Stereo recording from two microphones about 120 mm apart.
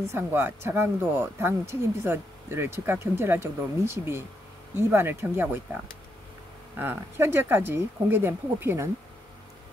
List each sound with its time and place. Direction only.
0.1 s speech: 20° right (ahead or behind)
6.8 s speech: 15° right (ahead or behind)